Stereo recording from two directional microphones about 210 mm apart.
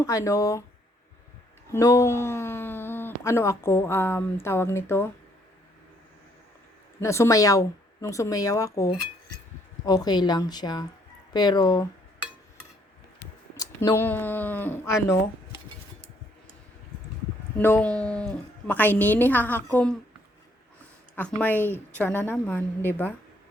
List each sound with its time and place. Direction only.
0.0 s a woman's voice: 15° left (ahead or behind)
1.7 s a woman's voice: 15° left (ahead or behind)
7.0 s a woman's voice: 15° left (ahead or behind)
13.6 s a woman's voice: 15° left (ahead or behind)
17.6 s a woman's voice: 10° left (ahead or behind)
21.2 s a woman's voice: 5° left (ahead or behind)